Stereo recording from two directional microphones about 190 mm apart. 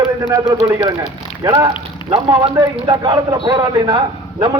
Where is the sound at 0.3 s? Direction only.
15° right (ahead or behind).